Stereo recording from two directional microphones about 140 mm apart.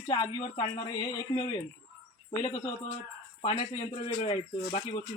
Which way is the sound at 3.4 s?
40° left (ahead or behind).